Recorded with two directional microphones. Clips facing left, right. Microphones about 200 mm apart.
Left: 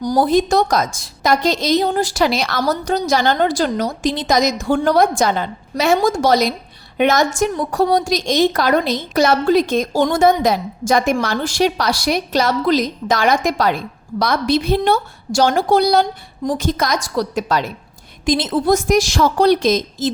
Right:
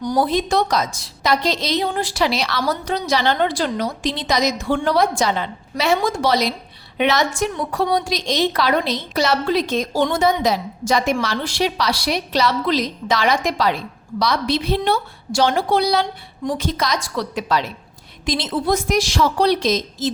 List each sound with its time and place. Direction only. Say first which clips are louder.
0.0 s a woman's voice: left 4 dB; 40° left (ahead or behind)